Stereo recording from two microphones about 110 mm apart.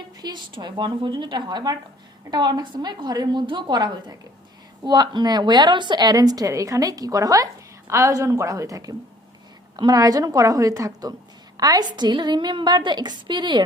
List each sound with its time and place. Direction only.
0.2 s a woman's voice: 40° right (ahead or behind)